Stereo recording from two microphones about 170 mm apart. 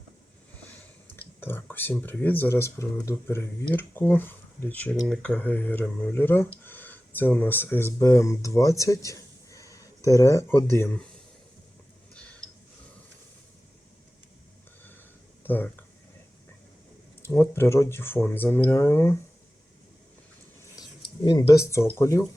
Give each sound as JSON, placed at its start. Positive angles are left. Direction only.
{"t": 0.6, "sound": "a sound", "side_deg": 10}
{"t": 1.4, "sound": "speech", "side_deg": 10}
{"t": 12.1, "sound": "a sound", "side_deg": 5}
{"t": 15.4, "sound": "speech", "side_deg": 10}
{"t": 17.2, "sound": "speech", "side_deg": 15}
{"t": 20.7, "sound": "speech", "side_deg": 25}